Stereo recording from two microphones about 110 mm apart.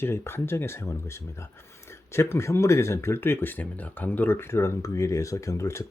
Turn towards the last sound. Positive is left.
turn(degrees=25)  # may be behind; listen again after turning